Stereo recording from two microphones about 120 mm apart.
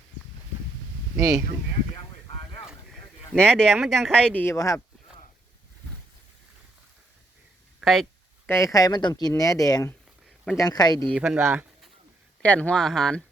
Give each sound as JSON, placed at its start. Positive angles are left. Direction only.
{"t": 2.6, "sound": "speech", "side_deg": 5}
{"t": 4.4, "sound": "speech", "side_deg": 25}
{"t": 7.8, "sound": "a sound", "side_deg": 0}
{"t": 8.4, "sound": "speech", "side_deg": 25}
{"t": 11.1, "sound": "speech", "side_deg": -5}
{"t": 12.4, "sound": "speech", "side_deg": 10}